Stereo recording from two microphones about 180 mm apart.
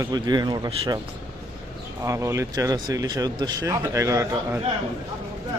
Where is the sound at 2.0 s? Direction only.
15° right (ahead or behind).